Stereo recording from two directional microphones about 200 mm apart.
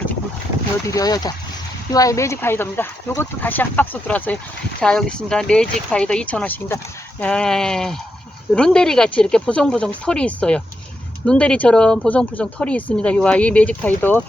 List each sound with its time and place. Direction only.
0.9 s speech: 20° left (ahead or behind)